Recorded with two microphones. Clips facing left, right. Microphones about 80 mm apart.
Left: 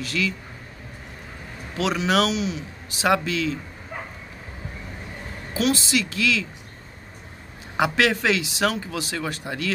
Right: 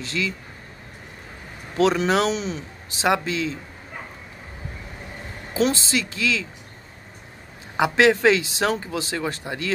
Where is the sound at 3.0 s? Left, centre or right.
Right.